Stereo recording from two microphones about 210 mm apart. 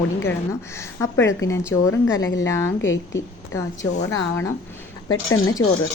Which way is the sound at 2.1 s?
70° left (ahead or behind).